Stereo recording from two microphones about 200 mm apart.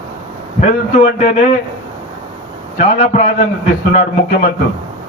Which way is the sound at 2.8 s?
35° left (ahead or behind).